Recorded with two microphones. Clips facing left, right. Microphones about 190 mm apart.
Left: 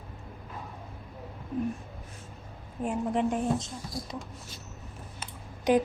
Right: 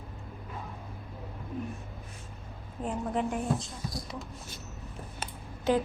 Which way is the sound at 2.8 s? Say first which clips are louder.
Left 3 dB; 20° left (ahead or behind).